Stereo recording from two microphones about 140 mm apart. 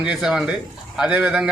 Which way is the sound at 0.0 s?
5° right (ahead or behind).